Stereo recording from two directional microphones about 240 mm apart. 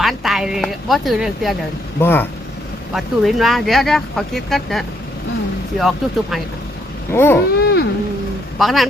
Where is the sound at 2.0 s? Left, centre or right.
Centre.